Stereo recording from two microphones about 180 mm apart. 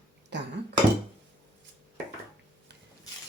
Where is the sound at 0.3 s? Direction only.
70° right (ahead or behind).